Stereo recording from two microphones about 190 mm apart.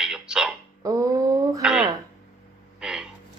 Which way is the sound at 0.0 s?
5° right (ahead or behind).